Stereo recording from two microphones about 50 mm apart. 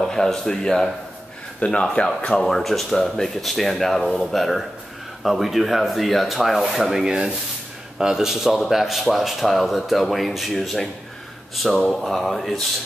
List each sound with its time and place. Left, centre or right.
0.0 s speech: centre
7.1 s speech: centre